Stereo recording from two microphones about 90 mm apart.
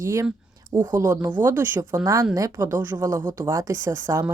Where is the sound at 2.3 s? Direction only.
35° right (ahead or behind).